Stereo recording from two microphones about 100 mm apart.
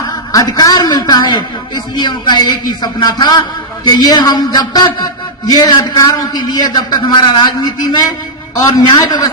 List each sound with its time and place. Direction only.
0.0 s a man's voice: 40° left (ahead or behind)